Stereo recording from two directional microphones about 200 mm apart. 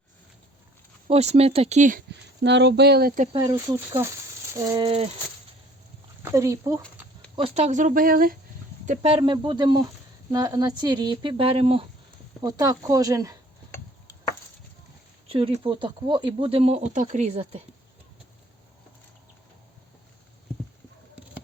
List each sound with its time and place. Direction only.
1.0 s speech: 30° right (ahead or behind)
2.0 s speech: 60° right (ahead or behind)
3.3 s speech: 20° right (ahead or behind)
6.3 s speech: 15° right (ahead or behind)
7.3 s speech: 30° right (ahead or behind)
8.9 s speech: 30° right (ahead or behind)
12.4 s speech: 20° right (ahead or behind)
15.3 s speech: 25° right (ahead or behind)